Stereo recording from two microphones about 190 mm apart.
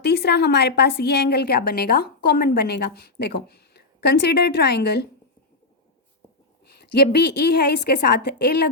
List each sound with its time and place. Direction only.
0.0 s a woman's voice: 60° left (ahead or behind)
6.9 s a woman's voice: 60° left (ahead or behind)